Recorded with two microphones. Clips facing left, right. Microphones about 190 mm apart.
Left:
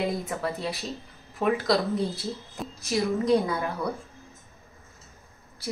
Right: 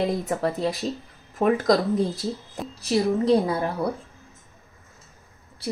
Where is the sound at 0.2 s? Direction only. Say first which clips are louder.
Right 6 dB; 40° right (ahead or behind).